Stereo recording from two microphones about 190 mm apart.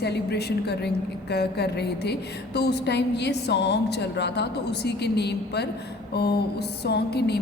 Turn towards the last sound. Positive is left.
turn(degrees=60)  # may be behind; listen again after turning